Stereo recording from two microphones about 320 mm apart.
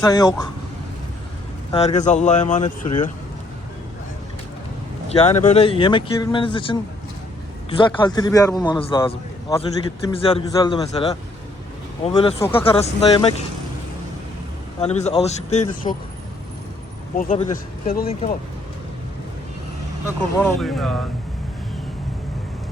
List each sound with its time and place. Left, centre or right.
0.0 s a man's voice: centre
1.7 s speech: left
5.0 s a man's voice: centre
14.8 s speech: centre
17.2 s speech: left
20.1 s speech: centre